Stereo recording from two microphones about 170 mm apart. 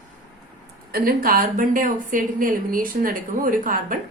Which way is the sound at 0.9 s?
55° right (ahead or behind).